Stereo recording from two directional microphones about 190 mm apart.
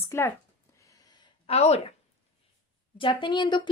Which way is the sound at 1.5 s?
35° left (ahead or behind).